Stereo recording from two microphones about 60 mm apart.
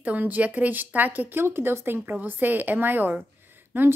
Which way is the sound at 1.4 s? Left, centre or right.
Right.